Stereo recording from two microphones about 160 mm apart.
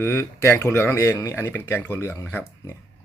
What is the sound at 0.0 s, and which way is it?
Speech, 15° left (ahead or behind).